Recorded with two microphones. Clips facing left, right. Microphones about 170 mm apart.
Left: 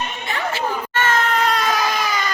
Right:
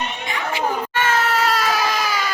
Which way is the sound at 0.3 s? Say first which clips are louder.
Even; 15° right (ahead or behind).